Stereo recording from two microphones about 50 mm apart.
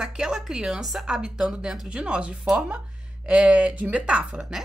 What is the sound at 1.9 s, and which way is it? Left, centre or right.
Speech, centre.